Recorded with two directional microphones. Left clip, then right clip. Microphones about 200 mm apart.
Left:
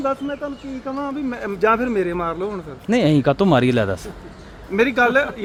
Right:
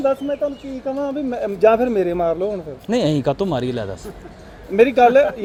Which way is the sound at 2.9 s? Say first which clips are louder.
Left 2 dB; 15° left (ahead or behind).